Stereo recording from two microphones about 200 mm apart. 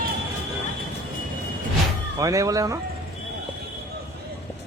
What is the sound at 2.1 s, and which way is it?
Speech, 15° right (ahead or behind).